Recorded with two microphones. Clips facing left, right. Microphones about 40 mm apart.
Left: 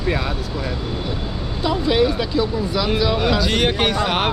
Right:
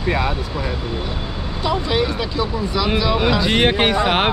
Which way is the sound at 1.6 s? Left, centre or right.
Centre.